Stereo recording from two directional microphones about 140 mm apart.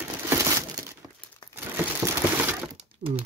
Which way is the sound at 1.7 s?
15° right (ahead or behind).